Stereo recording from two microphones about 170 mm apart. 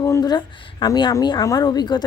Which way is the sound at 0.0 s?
20° left (ahead or behind).